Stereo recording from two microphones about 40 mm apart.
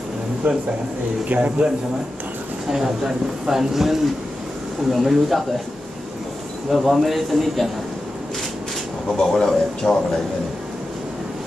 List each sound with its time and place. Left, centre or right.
0.4 s speech: right
1.3 s speech: right
2.7 s a man's voice: centre
6.7 s a man's voice: centre
9.2 s speech: centre